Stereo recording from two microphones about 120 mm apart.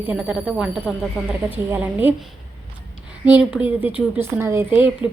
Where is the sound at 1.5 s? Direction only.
15° right (ahead or behind).